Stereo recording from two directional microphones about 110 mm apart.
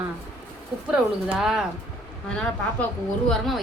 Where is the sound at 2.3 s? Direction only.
10° left (ahead or behind).